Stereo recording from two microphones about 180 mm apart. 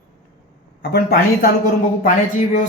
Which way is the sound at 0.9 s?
55° left (ahead or behind).